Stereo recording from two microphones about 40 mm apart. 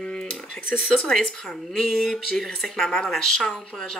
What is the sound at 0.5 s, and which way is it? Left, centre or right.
Speech, left.